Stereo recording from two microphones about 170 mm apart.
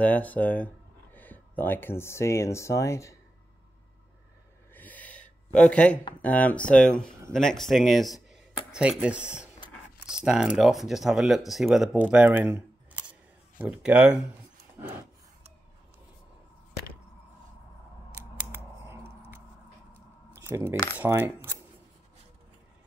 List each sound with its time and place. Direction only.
0.0 s speech: 10° left (ahead or behind)
4.7 s gasp: 10° left (ahead or behind)
6.2 s speech: 10° left (ahead or behind); by 13.0 s 10° right (ahead or behind)
13.6 s coin: 10° right (ahead or behind)
20.3 s coin: 15° right (ahead or behind)